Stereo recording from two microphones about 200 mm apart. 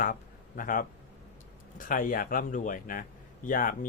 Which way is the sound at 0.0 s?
45° left (ahead or behind).